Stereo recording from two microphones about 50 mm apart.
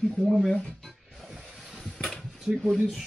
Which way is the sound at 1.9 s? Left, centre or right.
Centre.